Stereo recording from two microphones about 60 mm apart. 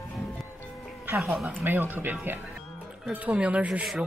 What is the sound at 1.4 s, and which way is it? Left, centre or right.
Speech, right.